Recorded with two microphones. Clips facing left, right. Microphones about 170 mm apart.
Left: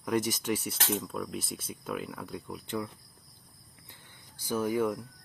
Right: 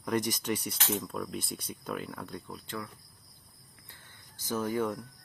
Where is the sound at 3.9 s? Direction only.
10° left (ahead or behind).